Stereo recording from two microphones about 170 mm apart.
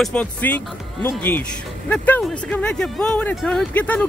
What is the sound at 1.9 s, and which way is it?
Speech, 10° left (ahead or behind).